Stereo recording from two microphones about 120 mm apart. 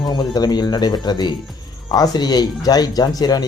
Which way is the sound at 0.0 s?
35° left (ahead or behind).